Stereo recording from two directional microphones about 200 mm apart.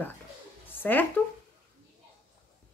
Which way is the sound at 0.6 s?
10° left (ahead or behind).